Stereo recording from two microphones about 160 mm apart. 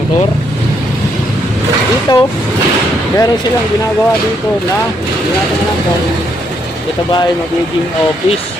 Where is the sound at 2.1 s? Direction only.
25° left (ahead or behind).